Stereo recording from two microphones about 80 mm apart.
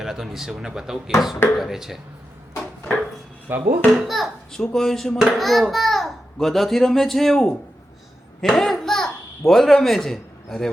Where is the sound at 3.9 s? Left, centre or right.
Centre.